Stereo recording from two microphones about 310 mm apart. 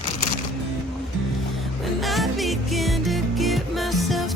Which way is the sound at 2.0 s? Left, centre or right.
Centre.